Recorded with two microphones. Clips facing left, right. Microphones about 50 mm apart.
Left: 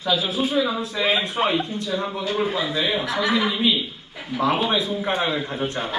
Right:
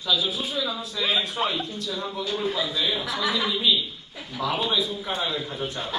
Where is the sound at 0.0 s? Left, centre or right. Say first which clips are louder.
Left 4 dB; left.